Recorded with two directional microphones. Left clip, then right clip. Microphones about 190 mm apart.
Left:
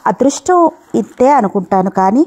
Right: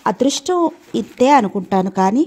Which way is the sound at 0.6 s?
50° left (ahead or behind).